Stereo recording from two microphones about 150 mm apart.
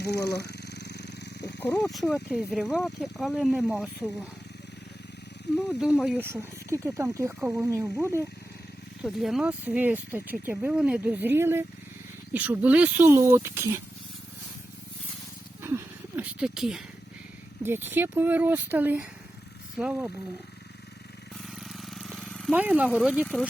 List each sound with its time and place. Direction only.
0.0 s purr: 90° left
1.5 s speech: 10° left (ahead or behind); by 3.8 s 5° right (ahead or behind)
5.5 s speech: 5° right (ahead or behind)
6.1 s speech: 15° right (ahead or behind)
7.3 s speech: 5° right (ahead or behind)
9.0 s speech: centre (ahead or behind)
15.6 s a sound: 15° right (ahead or behind)
17.6 s speech: 15° right (ahead or behind)
21.4 s jackhammer: centre (ahead or behind)
22.5 s speech: 10° right (ahead or behind)